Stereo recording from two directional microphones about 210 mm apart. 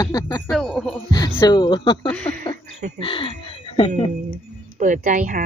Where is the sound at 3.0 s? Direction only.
25° left (ahead or behind).